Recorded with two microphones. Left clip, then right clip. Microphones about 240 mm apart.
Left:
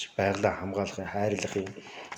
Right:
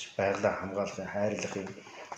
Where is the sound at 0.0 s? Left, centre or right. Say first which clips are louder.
Left 2 dB; left.